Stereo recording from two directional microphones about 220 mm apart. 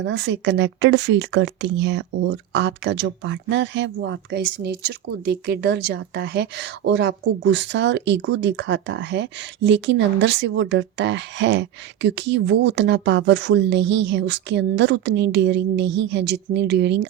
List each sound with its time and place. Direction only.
0.0 s speech: 55° right (ahead or behind)